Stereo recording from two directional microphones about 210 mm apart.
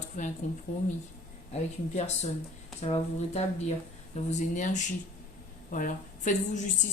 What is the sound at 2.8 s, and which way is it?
A woman's voice, 30° left (ahead or behind).